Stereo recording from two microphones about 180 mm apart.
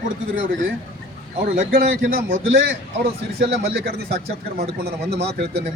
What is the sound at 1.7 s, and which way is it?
A man's voice, 55° right (ahead or behind).